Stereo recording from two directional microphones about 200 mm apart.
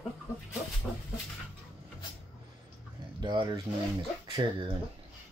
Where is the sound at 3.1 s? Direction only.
20° right (ahead or behind).